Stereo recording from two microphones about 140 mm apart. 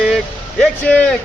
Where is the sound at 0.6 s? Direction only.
10° left (ahead or behind).